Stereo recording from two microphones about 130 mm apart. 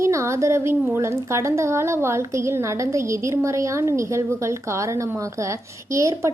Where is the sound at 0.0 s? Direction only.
25° right (ahead or behind).